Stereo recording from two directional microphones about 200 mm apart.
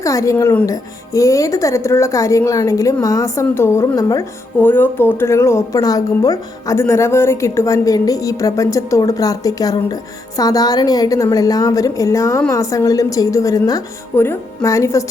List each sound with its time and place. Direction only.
0.0 s a woman's voice: 15° left (ahead or behind)